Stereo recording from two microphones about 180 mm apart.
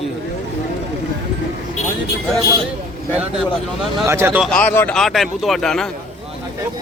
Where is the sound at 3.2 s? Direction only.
5° right (ahead or behind).